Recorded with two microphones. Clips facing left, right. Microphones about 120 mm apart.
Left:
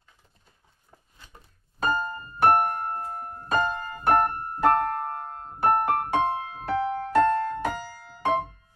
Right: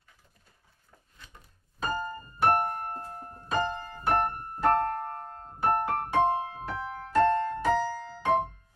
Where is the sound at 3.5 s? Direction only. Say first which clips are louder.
Left 4 dB; 60° left (ahead or behind).